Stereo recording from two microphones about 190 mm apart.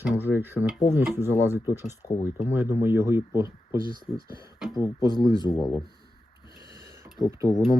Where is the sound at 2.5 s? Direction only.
15° right (ahead or behind).